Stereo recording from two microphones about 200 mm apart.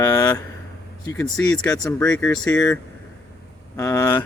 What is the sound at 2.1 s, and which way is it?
Speech, 5° left (ahead or behind).